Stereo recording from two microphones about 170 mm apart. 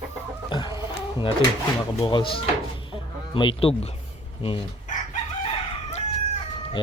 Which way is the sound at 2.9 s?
30° left (ahead or behind).